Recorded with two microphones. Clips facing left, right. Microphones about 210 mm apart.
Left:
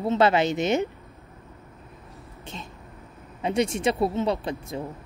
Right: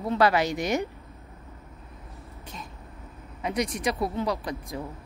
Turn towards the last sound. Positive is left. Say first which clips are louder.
# left 3 dB
turn(degrees=25)  # may be behind; listen again after turning